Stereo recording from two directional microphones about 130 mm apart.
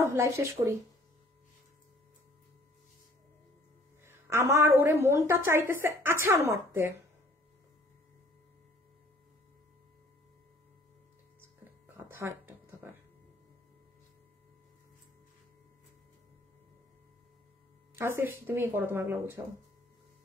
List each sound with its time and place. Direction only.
0.0 s speech: 20° right (ahead or behind)
4.0 s a woman's voice: 20° right (ahead or behind)
11.6 s a sound: 20° right (ahead or behind)
17.9 s speech: 20° right (ahead or behind)